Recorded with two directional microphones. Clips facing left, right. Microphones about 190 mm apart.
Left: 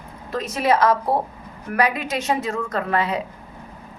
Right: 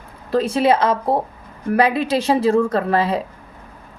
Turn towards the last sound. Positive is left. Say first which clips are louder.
# right 4 dB
turn(degrees=-30)  # may be behind; listen again after turning